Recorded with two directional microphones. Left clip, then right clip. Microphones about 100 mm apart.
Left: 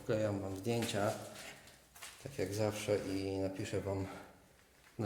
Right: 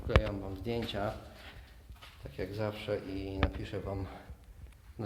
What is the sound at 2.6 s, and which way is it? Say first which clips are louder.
Speech: left 1 dB; 15° left (ahead or behind).